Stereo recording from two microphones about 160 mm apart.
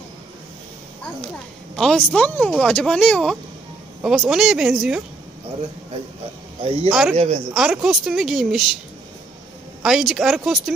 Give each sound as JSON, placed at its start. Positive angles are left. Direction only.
{"t": 1.8, "sound": "speech", "side_deg": 5}
{"t": 6.6, "sound": "speech", "side_deg": -35}
{"t": 6.9, "sound": "speech", "side_deg": -5}
{"t": 7.2, "sound": "speech", "side_deg": -45}
{"t": 7.5, "sound": "speech", "side_deg": -5}
{"t": 9.8, "sound": "speech", "side_deg": 0}